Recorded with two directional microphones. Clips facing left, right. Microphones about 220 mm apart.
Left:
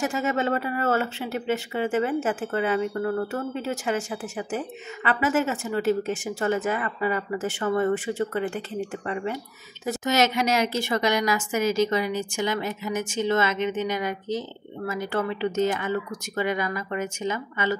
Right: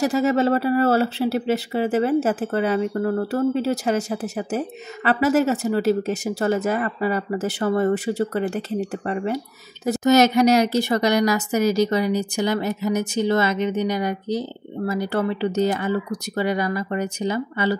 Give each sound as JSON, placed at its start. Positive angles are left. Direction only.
{"t": 0.0, "sound": "speech", "side_deg": -35}